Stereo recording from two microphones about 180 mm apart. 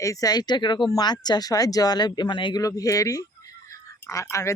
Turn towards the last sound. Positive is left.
turn(degrees=15)  # may be behind; listen again after turning